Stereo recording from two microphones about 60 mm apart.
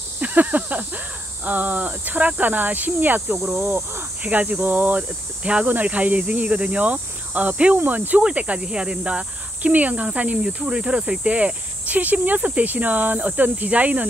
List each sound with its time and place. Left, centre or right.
0.2 s speech: right
7.8 s cricket: right
8.2 s speech: right